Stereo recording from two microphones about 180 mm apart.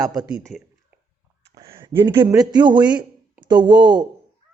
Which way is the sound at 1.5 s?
15° right (ahead or behind).